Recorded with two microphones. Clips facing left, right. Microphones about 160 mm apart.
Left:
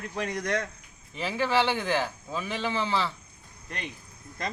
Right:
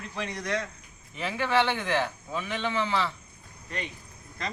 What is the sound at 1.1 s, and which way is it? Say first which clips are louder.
Speech: even; 30° left (ahead or behind).